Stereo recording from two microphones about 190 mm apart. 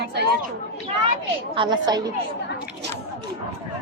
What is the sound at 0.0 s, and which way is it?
Speech, 60° right (ahead or behind).